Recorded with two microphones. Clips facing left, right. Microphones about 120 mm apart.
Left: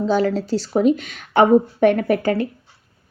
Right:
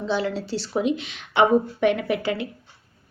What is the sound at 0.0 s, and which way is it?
A woman's voice, 40° left (ahead or behind).